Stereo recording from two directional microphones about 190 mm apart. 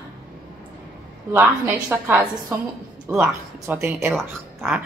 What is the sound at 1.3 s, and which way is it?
Speech, 10° right (ahead or behind).